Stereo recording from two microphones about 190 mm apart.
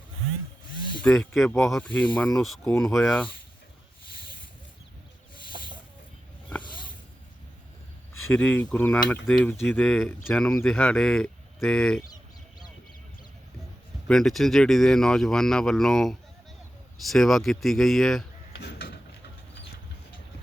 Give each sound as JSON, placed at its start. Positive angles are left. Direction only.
{"t": 1.0, "sound": "speech", "side_deg": 0}
{"t": 5.5, "sound": "snake", "side_deg": -25}
{"t": 8.3, "sound": "speech", "side_deg": 5}
{"t": 12.0, "sound": "bird", "side_deg": 20}
{"t": 14.1, "sound": "speech", "side_deg": 0}
{"t": 18.5, "sound": "a sound", "side_deg": 60}